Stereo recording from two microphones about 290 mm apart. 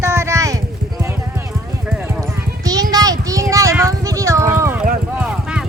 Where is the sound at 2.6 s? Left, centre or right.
Centre.